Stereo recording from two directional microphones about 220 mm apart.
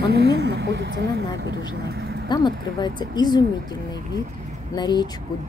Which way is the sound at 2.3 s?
20° left (ahead or behind).